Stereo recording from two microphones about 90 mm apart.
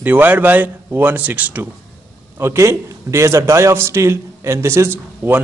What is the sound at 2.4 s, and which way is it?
A man's voice, 30° right (ahead or behind).